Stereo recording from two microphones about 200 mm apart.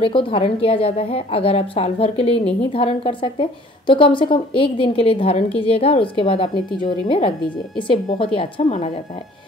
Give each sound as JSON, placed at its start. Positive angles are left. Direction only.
{"t": 0.0, "sound": "a woman's voice", "side_deg": 25}